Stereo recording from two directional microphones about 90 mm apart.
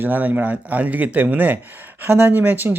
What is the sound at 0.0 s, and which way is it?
Speech, 20° right (ahead or behind).